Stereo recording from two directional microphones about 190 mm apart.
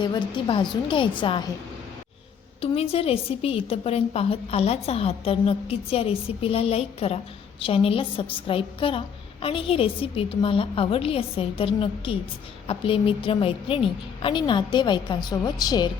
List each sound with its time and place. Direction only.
0.0 s a woman's voice: 25° left (ahead or behind)
2.6 s a woman's voice: 30° left (ahead or behind)